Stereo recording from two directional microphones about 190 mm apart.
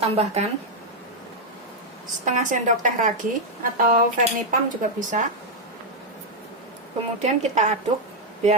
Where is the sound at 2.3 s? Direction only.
40° right (ahead or behind).